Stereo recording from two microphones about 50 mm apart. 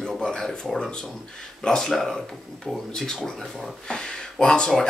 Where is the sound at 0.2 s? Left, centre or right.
Centre.